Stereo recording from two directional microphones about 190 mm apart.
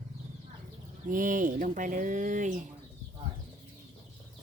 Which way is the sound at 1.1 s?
45° right (ahead or behind).